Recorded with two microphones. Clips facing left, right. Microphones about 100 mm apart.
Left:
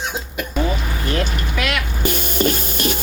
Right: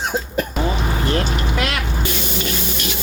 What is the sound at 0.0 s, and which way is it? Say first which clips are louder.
Hiccup: right 4 dB; 40° right (ahead or behind).